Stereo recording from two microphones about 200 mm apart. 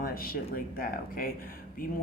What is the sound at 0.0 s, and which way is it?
Speech, 45° left (ahead or behind).